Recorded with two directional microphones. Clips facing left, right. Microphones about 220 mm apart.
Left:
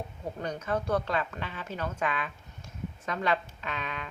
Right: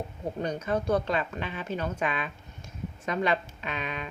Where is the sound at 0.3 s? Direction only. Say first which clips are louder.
Right 3 dB; 20° right (ahead or behind).